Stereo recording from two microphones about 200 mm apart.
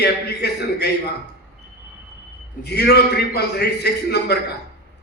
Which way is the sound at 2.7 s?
55° left (ahead or behind).